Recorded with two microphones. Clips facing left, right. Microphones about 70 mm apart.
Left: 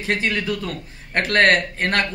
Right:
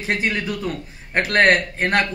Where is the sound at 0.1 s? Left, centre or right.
Centre.